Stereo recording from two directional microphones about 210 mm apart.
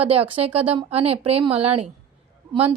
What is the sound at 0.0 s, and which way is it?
A woman's voice, 25° right (ahead or behind).